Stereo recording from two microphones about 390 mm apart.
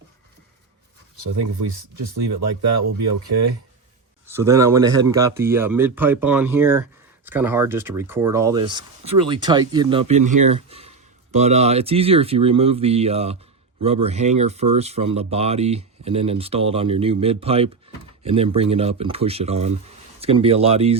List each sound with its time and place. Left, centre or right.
1.2 s speech: right
4.3 s speech: centre